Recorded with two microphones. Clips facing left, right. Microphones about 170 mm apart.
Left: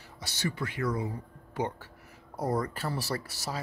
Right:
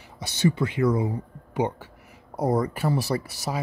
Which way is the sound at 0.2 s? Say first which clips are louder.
Right 10 dB; 20° right (ahead or behind).